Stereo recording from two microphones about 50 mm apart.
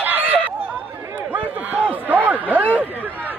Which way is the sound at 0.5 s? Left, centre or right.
Right.